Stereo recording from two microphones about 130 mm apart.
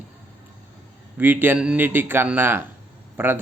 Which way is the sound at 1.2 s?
15° right (ahead or behind).